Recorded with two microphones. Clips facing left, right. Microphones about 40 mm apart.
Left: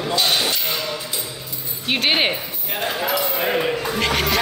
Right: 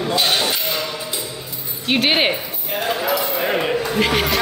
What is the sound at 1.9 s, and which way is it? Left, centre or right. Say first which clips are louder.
Speech: right 2 dB; centre.